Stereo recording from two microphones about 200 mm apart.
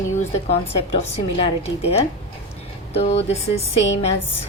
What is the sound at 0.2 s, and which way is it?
A woman's voice, 30° left (ahead or behind).